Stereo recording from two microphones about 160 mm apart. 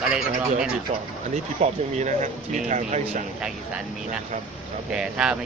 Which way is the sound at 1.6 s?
40° right (ahead or behind).